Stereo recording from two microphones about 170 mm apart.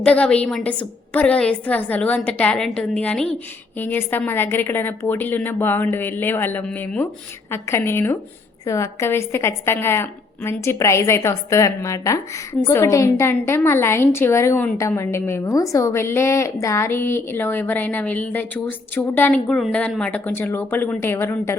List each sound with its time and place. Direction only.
0.0 s a woman's voice: 5° left (ahead or behind)